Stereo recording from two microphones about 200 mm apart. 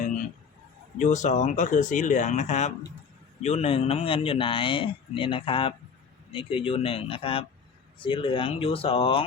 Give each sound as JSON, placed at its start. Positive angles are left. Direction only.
{"t": 0.9, "sound": "speech", "side_deg": 35}